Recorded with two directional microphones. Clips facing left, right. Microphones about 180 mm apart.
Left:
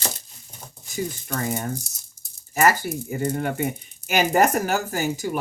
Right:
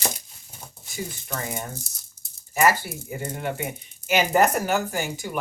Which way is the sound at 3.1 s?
45° left (ahead or behind).